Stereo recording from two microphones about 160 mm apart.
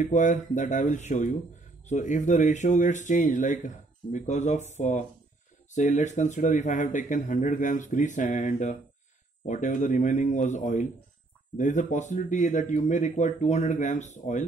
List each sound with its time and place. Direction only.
0.0 s speech: 50° left (ahead or behind)